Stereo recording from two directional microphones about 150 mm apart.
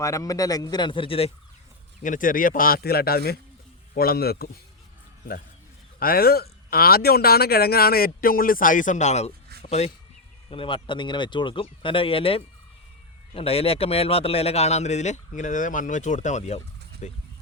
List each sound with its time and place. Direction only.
0.0 s speech: 20° left (ahead or behind); by 1.3 s 40° left (ahead or behind)
2.0 s speech: 65° left (ahead or behind); by 4.4 s 90° left
6.0 s a man's voice: 85° left; by 17.2 s 50° left (ahead or behind)